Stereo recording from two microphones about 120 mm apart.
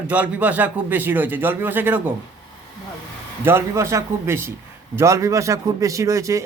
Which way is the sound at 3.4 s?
20° right (ahead or behind).